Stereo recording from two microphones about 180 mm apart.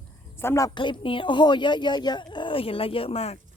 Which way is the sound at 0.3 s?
15° left (ahead or behind).